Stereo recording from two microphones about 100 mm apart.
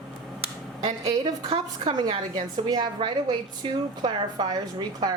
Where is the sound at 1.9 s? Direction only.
45° right (ahead or behind).